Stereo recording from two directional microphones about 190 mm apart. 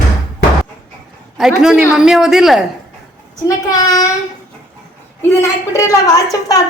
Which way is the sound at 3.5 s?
20° left (ahead or behind).